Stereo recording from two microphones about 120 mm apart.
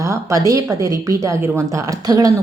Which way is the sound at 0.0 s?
25° right (ahead or behind).